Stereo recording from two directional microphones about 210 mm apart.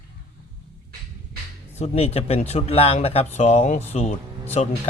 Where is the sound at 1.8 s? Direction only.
30° left (ahead or behind).